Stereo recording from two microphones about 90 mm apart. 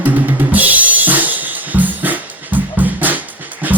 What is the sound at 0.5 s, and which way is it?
Music, 20° right (ahead or behind).